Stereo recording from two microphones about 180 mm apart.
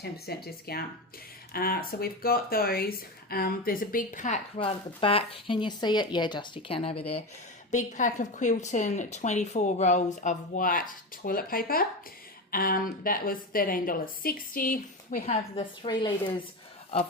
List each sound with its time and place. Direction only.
0.0 s speech: 60° left (ahead or behind); by 7.0 s 30° left (ahead or behind)
7.7 s a woman's voice: 45° left (ahead or behind)
15.3 s a woman's voice: 30° left (ahead or behind)